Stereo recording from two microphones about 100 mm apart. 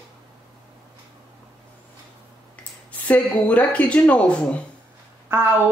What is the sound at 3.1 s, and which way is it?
Speech, 15° left (ahead or behind).